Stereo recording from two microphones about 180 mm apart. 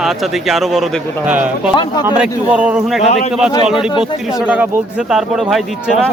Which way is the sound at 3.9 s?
25° left (ahead or behind).